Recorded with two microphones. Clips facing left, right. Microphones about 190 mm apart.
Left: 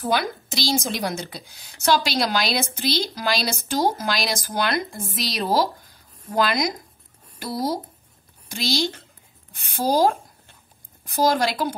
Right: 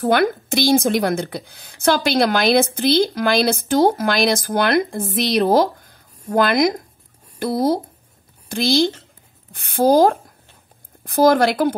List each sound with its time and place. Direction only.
0.0 s a woman's voice: 55° right (ahead or behind)